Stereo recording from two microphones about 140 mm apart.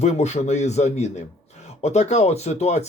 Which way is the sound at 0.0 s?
55° left (ahead or behind).